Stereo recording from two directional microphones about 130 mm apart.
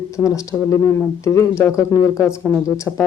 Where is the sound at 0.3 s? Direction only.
25° left (ahead or behind).